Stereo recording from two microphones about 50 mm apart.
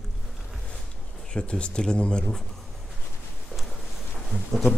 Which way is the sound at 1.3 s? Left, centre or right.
Left.